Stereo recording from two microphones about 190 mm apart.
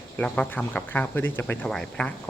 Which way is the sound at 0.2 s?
5° left (ahead or behind).